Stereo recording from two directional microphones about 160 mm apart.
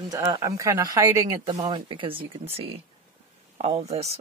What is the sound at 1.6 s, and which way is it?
Speech, 30° right (ahead or behind).